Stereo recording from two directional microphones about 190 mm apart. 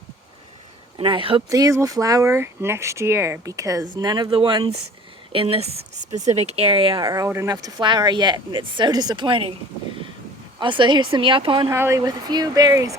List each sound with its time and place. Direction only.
0.9 s speech: 25° right (ahead or behind)
10.6 s speech: 25° right (ahead or behind)
11.7 s speech: 15° right (ahead or behind)